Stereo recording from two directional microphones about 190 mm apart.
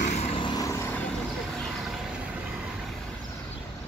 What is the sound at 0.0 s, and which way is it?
Vehicle, 35° left (ahead or behind).